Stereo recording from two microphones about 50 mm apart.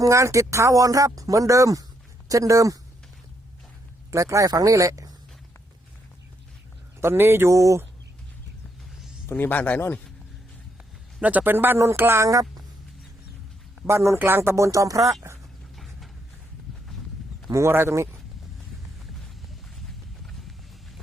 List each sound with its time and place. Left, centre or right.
0.1 s speech: right
4.1 s speech: right
7.0 s speech: right
7.5 s speech: right
9.3 s speech: left
11.2 s a man's voice: right
11.4 s speech: right
13.8 s speech: right
14.3 s speech: right
14.5 s speech: right
17.7 s speech: right